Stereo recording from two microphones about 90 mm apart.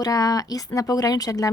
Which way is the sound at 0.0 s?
45° left (ahead or behind).